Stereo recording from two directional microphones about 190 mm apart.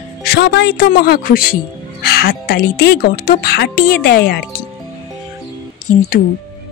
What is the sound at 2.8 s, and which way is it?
Speech, 55° left (ahead or behind).